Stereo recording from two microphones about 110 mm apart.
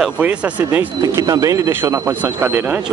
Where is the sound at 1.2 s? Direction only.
30° right (ahead or behind).